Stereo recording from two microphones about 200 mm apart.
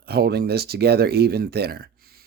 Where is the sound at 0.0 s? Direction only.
55° right (ahead or behind).